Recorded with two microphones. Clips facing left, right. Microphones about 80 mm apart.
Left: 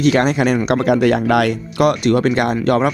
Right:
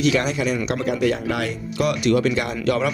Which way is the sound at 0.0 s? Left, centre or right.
Left.